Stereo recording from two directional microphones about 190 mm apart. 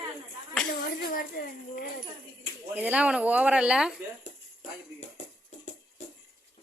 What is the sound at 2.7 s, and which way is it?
Speech, 5° right (ahead or behind).